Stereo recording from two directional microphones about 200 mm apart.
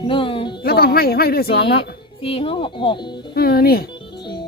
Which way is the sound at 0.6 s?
50° left (ahead or behind).